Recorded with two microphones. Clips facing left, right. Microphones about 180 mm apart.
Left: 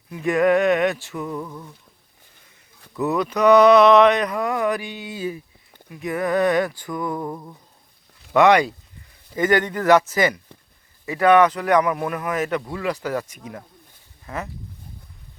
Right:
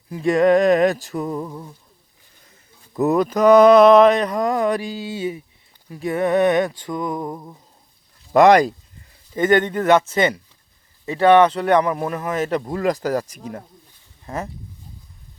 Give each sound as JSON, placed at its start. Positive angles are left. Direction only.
{"t": 0.1, "sound": "speech", "side_deg": -30}
{"t": 2.9, "sound": "speech", "side_deg": -40}
{"t": 5.9, "sound": "a sound", "side_deg": -30}
{"t": 8.3, "sound": "speech", "side_deg": -40}
{"t": 9.3, "sound": "a sound", "side_deg": -25}
{"t": 11.0, "sound": "speech", "side_deg": -30}